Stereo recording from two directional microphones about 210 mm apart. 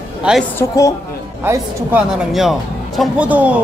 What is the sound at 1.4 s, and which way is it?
Speech, 10° right (ahead or behind).